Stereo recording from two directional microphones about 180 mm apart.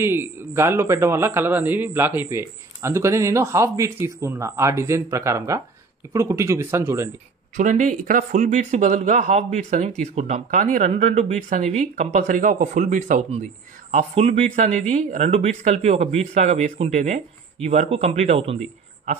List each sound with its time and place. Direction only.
0.0 s a man's voice: 15° right (ahead or behind)
7.5 s speech: 45° right (ahead or behind)